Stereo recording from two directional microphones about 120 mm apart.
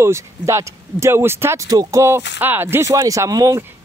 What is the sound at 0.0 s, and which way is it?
A man's voice, 25° right (ahead or behind).